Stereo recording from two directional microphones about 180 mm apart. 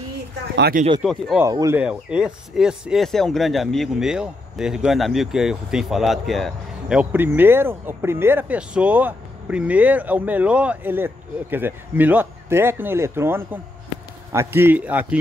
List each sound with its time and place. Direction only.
0.6 s speech: 60° right (ahead or behind)
1.0 s speech: centre (ahead or behind)
1.4 s speech: 15° right (ahead or behind)
1.8 s speech: 5° right (ahead or behind)